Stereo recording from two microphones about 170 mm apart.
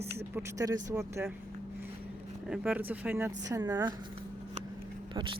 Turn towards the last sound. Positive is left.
turn(degrees=-35)  # may be behind; listen again after turning